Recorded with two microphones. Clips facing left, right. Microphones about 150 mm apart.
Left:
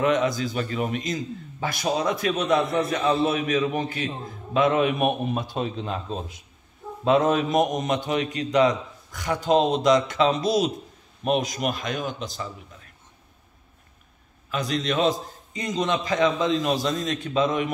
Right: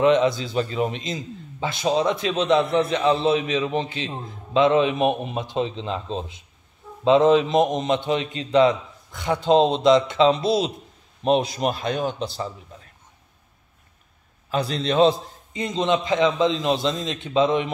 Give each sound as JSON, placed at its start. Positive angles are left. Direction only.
{"t": 0.0, "sound": "a man's voice", "side_deg": -25}
{"t": 14.5, "sound": "a man's voice", "side_deg": -30}